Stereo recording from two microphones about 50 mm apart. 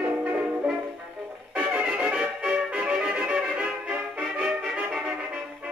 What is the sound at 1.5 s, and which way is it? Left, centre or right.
Music, right.